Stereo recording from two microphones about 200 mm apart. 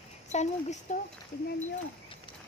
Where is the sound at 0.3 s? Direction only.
35° left (ahead or behind).